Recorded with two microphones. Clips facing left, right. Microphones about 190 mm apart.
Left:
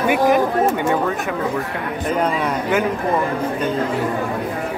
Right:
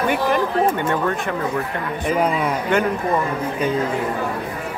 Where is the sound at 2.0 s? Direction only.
5° right (ahead or behind).